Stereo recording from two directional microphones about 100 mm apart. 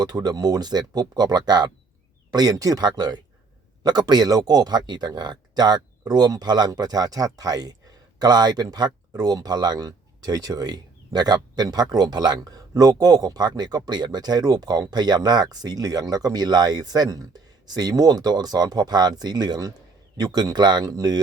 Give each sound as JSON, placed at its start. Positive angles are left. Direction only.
{"t": 0.0, "sound": "speech", "side_deg": -40}